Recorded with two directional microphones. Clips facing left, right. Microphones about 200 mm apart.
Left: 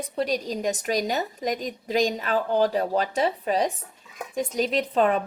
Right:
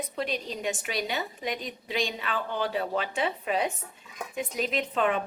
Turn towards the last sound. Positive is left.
turn(degrees=35)  # may be behind; listen again after turning